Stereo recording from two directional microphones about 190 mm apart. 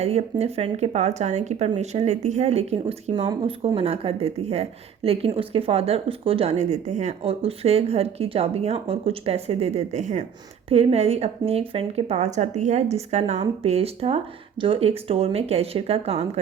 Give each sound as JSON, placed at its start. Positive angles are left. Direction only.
{"t": 0.0, "sound": "speech", "side_deg": -35}